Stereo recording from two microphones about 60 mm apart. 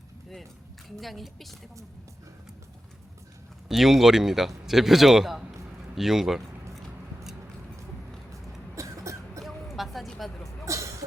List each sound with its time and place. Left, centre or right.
0.9 s a man's voice: centre
3.7 s a man's voice: centre
8.7 s cough: right
9.4 s a sound: centre
10.2 s hubbub: centre
10.7 s vehicle: right